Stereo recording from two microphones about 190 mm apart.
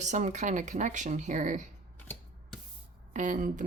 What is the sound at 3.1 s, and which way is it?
Speech, 40° right (ahead or behind).